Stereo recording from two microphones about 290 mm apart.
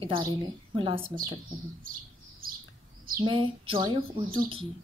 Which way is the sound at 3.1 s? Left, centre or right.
Centre.